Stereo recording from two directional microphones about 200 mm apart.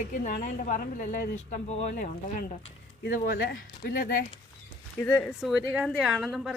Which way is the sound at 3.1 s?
50° left (ahead or behind).